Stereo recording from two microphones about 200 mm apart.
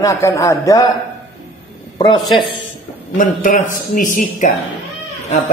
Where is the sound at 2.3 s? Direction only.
25° left (ahead or behind).